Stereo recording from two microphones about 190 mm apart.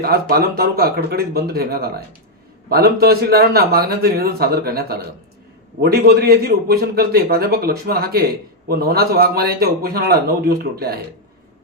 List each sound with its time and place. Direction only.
0.0 s a man's voice: 55° right (ahead or behind)